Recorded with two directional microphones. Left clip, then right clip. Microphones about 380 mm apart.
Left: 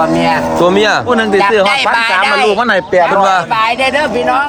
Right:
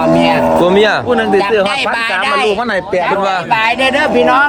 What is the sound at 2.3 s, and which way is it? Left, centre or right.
Speech, centre.